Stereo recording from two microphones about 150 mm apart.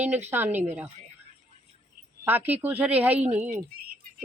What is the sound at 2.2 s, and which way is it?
Speech, 10° right (ahead or behind).